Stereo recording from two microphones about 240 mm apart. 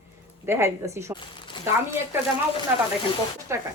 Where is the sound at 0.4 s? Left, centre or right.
Centre.